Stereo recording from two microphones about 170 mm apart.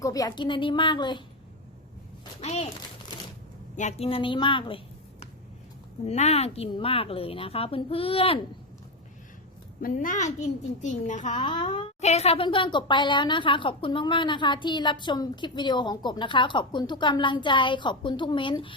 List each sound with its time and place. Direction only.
0.0 s a woman's voice: 20° left (ahead or behind)
2.4 s a child's voice: 40° left (ahead or behind)
3.8 s speech: 40° left (ahead or behind)
6.1 s speech: 40° left (ahead or behind)
9.8 s a child's voice: 50° left (ahead or behind)
11.3 s a woman's voice: 25° left (ahead or behind)